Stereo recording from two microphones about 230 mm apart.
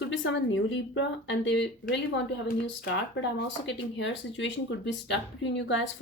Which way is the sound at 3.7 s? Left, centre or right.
Left.